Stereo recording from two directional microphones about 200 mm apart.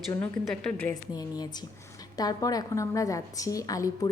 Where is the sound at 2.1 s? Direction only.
20° left (ahead or behind).